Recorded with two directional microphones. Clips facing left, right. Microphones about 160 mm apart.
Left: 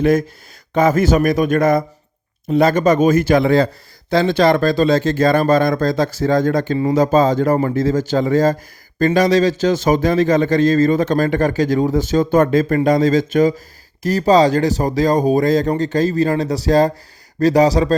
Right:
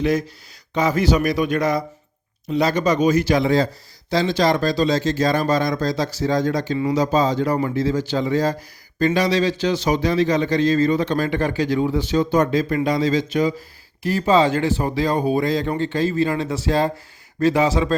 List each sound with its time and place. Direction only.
0.0 s a man's voice: 50° left (ahead or behind)